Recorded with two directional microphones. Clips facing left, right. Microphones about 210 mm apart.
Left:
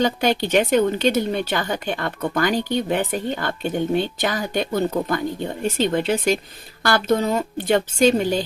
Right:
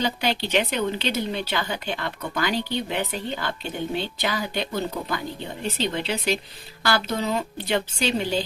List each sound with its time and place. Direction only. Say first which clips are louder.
0.0 s a woman's voice: left 6 dB; 45° left (ahead or behind)